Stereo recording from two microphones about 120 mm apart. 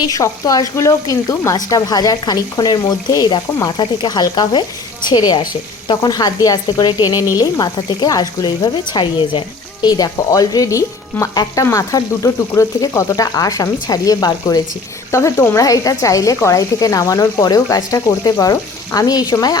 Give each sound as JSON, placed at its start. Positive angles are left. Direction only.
{"t": 0.0, "sound": "a woman's voice", "side_deg": 30}